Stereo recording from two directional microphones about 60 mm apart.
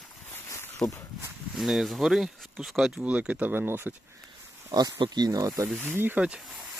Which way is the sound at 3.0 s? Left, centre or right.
Right.